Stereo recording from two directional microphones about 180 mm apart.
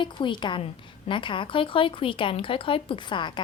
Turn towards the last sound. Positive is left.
turn(degrees=25)  # may be behind; listen again after turning